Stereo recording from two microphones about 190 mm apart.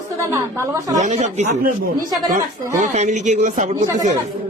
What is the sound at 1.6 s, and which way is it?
Speech, 50° right (ahead or behind).